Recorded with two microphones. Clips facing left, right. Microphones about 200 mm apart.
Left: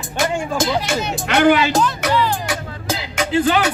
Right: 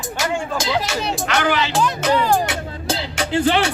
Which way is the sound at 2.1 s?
45° right (ahead or behind).